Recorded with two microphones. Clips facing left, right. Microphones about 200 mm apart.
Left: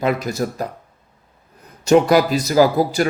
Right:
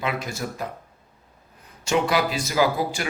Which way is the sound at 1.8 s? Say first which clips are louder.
Left 9 dB; 40° left (ahead or behind).